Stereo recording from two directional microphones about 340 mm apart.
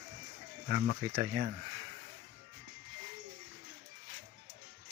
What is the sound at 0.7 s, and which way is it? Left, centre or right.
Speech, right.